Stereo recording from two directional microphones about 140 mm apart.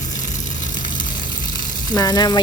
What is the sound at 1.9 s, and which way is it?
Speech, 30° left (ahead or behind).